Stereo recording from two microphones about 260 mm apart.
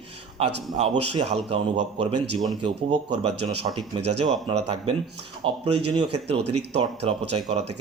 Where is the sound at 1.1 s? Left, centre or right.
Right.